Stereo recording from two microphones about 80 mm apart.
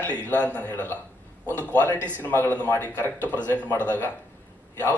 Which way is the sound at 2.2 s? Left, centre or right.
Left.